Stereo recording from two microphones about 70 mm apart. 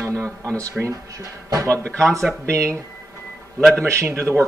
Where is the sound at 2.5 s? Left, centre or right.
Right.